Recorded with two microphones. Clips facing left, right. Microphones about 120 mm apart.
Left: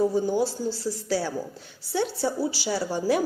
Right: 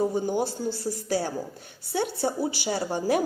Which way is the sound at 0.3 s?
55° right (ahead or behind).